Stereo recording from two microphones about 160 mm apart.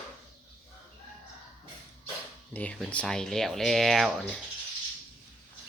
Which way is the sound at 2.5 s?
5° left (ahead or behind).